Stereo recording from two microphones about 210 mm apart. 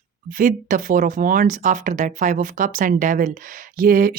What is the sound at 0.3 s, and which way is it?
Speech, 40° right (ahead or behind).